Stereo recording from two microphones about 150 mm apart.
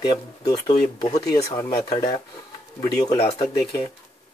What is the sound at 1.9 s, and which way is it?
Speech, 35° left (ahead or behind).